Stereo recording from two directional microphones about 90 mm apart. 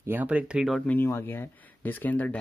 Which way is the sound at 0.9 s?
25° left (ahead or behind).